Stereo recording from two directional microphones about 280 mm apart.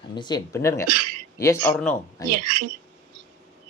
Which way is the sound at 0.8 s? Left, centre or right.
Right.